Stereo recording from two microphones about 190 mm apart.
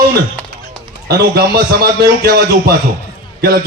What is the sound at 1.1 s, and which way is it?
A man's voice, 55° right (ahead or behind).